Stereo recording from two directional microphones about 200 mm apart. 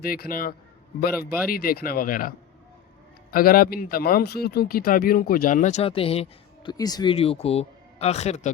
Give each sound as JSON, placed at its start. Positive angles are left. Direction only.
{"t": 0.0, "sound": "a man's voice", "side_deg": 50}
{"t": 3.3, "sound": "speech", "side_deg": 45}